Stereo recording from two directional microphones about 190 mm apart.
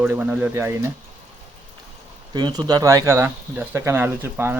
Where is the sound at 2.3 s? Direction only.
25° right (ahead or behind).